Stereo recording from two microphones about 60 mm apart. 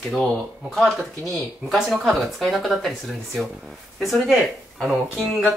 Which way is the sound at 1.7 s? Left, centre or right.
Centre.